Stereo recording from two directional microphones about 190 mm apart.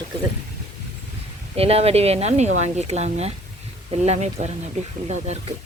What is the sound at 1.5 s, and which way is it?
Speech, 30° right (ahead or behind).